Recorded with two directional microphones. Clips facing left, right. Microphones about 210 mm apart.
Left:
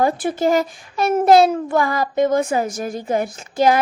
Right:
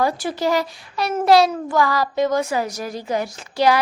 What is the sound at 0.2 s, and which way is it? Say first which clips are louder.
A child's voice: left 3 dB; 50° left (ahead or behind).